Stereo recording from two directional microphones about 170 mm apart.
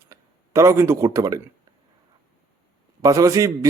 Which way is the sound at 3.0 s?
20° right (ahead or behind).